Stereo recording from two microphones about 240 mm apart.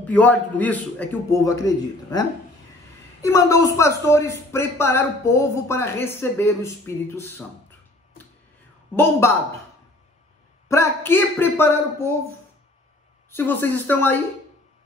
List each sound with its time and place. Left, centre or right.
0.0 s a man's voice: centre
8.9 s a man's voice: centre
10.7 s a man's voice: centre
13.3 s a man's voice: centre